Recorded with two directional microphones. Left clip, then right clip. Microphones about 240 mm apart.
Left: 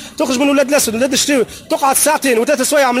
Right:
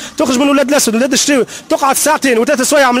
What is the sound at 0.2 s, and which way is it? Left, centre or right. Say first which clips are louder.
Speech: right 2 dB; right.